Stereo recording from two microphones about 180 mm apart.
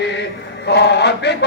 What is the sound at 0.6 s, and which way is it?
Mantra, 70° left (ahead or behind).